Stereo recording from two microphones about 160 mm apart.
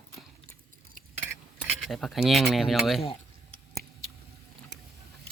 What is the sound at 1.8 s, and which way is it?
Speech, centre (ahead or behind).